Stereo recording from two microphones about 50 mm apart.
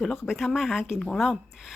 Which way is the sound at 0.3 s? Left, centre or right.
Centre.